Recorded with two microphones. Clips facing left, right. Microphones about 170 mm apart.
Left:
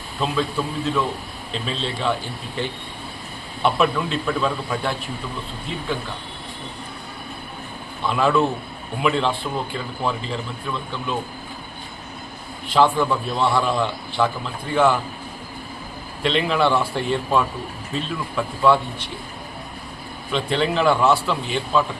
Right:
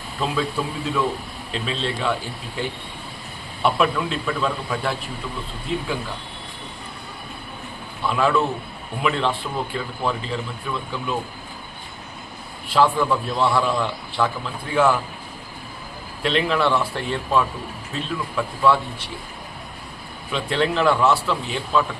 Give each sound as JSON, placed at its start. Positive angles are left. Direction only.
{"t": 0.2, "sound": "a man's voice", "side_deg": 0}
{"t": 1.5, "sound": "a man's voice", "side_deg": 0}
{"t": 3.6, "sound": "a man's voice", "side_deg": 0}
{"t": 8.0, "sound": "a man's voice", "side_deg": 0}
{"t": 12.7, "sound": "a man's voice", "side_deg": 0}
{"t": 16.2, "sound": "a man's voice", "side_deg": 0}
{"t": 20.3, "sound": "a man's voice", "side_deg": 0}